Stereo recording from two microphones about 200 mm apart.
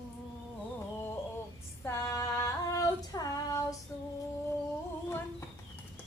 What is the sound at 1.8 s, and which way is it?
Female singing, 15° left (ahead or behind).